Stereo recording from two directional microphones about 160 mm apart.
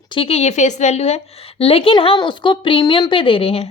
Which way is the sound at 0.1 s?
35° left (ahead or behind).